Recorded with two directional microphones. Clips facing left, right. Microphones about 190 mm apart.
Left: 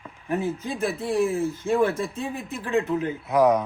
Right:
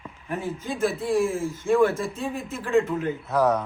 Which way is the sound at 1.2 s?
20° left (ahead or behind).